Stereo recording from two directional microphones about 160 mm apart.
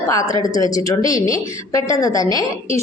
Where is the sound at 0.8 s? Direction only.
20° left (ahead or behind).